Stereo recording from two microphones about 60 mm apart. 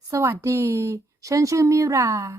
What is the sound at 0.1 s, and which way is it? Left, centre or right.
A woman's voice, right.